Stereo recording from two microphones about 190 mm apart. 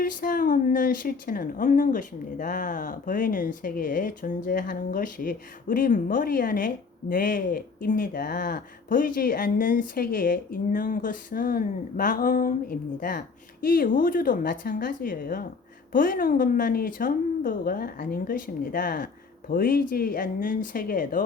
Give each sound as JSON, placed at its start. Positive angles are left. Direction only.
{"t": 0.0, "sound": "speech", "side_deg": 50}